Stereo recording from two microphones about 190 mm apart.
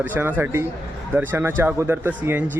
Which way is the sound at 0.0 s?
10° right (ahead or behind).